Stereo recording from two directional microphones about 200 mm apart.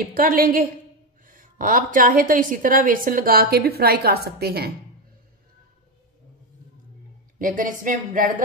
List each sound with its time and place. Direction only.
0.0 s a woman's voice: 45° right (ahead or behind)
7.3 s a woman's voice: 40° right (ahead or behind)